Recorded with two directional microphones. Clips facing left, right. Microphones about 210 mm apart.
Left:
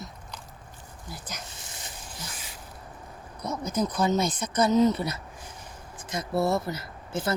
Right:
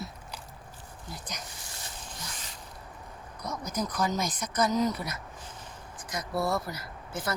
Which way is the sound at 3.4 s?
25° left (ahead or behind).